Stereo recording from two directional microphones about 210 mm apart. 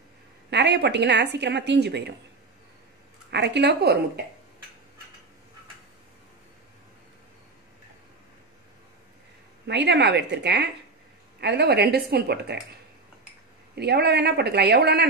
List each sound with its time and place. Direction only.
0.5 s a woman's voice: 55° right (ahead or behind)
3.3 s a woman's voice: 55° right (ahead or behind)
9.7 s a woman's voice: 55° right (ahead or behind)
13.7 s a woman's voice: 50° right (ahead or behind)